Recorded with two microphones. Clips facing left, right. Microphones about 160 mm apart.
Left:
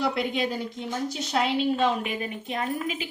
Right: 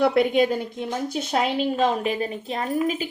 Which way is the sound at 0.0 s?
55° right (ahead or behind).